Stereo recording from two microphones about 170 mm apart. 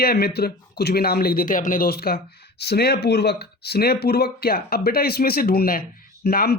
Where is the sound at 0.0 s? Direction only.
65° left (ahead or behind).